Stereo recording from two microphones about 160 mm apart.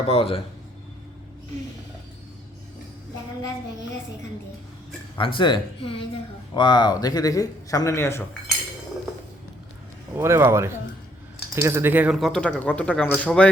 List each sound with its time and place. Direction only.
0.1 s speech: 35° left (ahead or behind)
5.1 s speech: 30° left (ahead or behind); by 8.2 s 15° left (ahead or behind)
10.2 s speech: 15° right (ahead or behind)
12.2 s speech: 5° left (ahead or behind)